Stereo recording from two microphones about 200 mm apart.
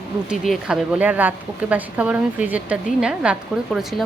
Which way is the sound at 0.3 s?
5° right (ahead or behind).